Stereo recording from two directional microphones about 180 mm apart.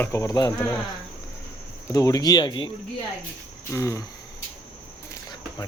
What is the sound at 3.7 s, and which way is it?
Speech, 15° left (ahead or behind).